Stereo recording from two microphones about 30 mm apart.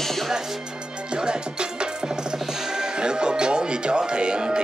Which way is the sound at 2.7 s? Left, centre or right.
Right.